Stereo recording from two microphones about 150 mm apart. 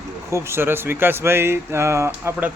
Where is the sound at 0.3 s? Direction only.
15° right (ahead or behind).